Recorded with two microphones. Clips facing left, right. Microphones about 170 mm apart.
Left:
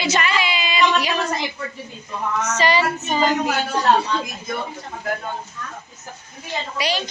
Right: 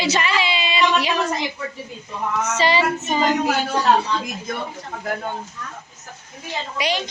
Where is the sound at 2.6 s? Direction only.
25° right (ahead or behind).